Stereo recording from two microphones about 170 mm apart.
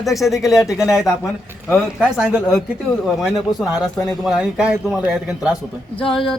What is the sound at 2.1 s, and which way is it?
A man's voice, 5° right (ahead or behind).